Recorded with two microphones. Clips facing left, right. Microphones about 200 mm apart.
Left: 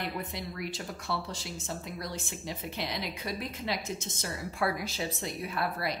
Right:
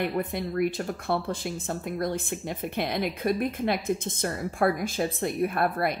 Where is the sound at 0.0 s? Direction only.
55° right (ahead or behind).